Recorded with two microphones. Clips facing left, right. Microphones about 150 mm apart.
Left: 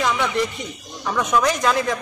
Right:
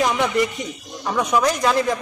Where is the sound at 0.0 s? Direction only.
20° right (ahead or behind).